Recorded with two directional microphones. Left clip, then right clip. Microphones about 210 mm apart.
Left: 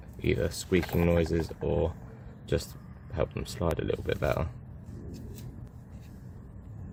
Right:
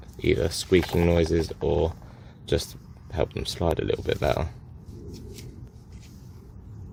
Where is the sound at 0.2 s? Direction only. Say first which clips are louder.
Right 6 dB; 35° right (ahead or behind).